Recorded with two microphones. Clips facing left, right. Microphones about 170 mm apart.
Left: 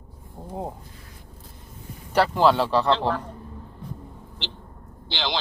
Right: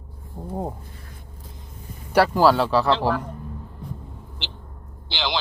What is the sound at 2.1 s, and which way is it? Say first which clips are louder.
Speech: right 2 dB; 5° right (ahead or behind).